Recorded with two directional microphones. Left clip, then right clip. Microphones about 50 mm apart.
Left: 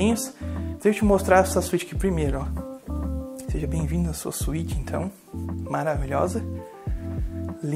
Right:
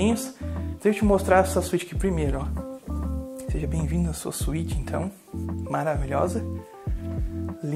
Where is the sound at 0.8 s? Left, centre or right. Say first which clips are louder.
Left 1 dB; left.